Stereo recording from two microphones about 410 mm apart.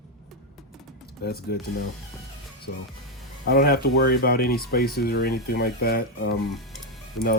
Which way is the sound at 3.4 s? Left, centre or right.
Left.